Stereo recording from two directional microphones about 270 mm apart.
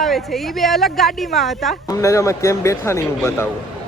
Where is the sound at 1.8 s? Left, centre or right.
Centre.